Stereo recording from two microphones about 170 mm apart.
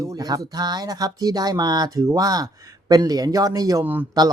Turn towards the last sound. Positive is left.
turn(degrees=-10)  # may be behind; listen again after turning